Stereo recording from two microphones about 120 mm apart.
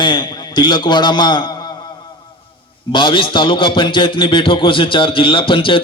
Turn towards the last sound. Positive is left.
turn(degrees=45)  # may be behind; listen again after turning